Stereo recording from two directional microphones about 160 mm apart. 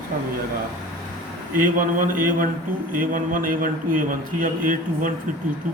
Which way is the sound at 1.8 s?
60° right (ahead or behind).